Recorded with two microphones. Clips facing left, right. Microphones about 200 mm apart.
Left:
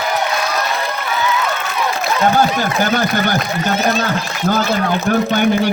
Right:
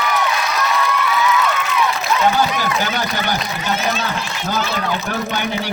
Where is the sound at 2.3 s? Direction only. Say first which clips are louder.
Left 3 dB; 50° left (ahead or behind).